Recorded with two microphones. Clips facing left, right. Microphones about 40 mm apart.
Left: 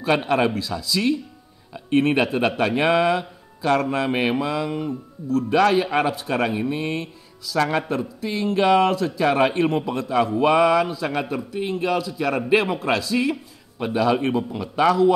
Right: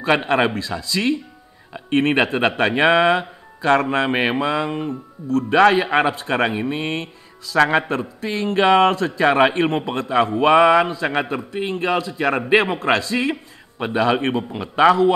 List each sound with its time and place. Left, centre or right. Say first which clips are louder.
0.0 s speech: right 2 dB; right
1.9 s speech: right 2 dB; right